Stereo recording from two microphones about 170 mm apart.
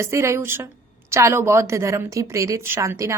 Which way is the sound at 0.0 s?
15° right (ahead or behind).